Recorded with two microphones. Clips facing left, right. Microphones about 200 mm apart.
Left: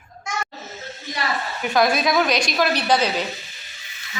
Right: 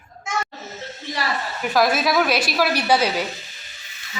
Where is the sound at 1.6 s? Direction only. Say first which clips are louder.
Even; 5° right (ahead or behind).